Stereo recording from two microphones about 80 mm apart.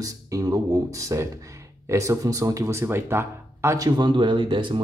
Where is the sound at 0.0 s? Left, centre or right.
Right.